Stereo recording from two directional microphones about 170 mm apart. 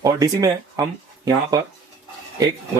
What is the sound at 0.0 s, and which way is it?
Speech, 20° right (ahead or behind).